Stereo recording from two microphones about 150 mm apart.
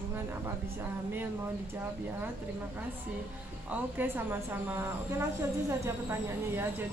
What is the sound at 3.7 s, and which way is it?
A woman's voice, 10° right (ahead or behind).